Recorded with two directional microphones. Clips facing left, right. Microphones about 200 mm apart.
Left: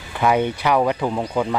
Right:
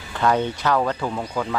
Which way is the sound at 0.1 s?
10° left (ahead or behind).